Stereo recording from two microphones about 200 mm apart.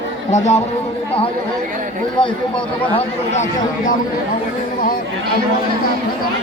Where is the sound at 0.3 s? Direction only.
35° left (ahead or behind).